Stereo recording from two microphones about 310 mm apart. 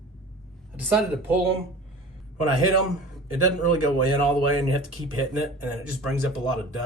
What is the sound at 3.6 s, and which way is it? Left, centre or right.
Speech, right.